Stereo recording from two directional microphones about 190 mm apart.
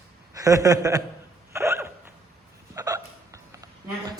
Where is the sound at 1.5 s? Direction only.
15° right (ahead or behind).